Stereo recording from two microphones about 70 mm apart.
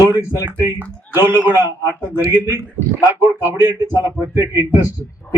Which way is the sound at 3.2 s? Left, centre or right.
Right.